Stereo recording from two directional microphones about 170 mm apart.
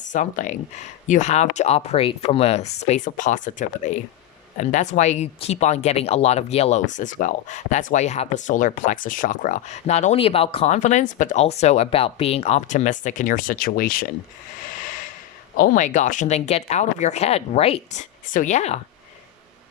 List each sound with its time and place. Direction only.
0.1 s speech: 50° left (ahead or behind)
15.5 s speech: 55° left (ahead or behind)